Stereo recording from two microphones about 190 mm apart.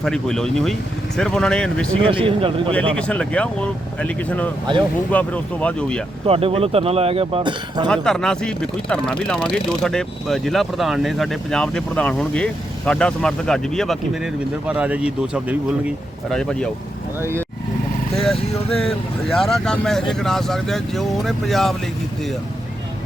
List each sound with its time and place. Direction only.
0.0 s speech: centre (ahead or behind)
2.0 s speech: 25° right (ahead or behind)
2.9 s speech: 5° left (ahead or behind)
6.2 s speech: 30° right (ahead or behind)
7.9 s speech: 5° left (ahead or behind)
18.8 s speech: centre (ahead or behind)